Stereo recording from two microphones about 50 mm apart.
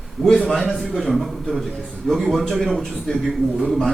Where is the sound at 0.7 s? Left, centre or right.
Centre.